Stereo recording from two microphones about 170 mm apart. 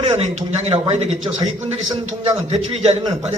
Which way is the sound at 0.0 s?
40° right (ahead or behind).